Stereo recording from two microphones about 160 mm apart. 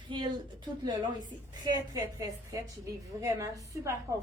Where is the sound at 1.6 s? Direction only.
20° right (ahead or behind).